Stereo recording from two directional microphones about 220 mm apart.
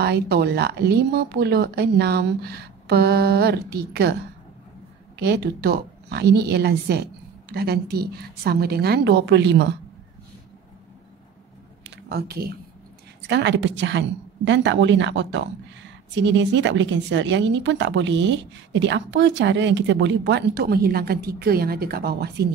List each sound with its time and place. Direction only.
0.0 s a woman's voice: 45° right (ahead or behind)
5.2 s a woman's voice: 45° right (ahead or behind)
12.1 s a woman's voice: 45° right (ahead or behind)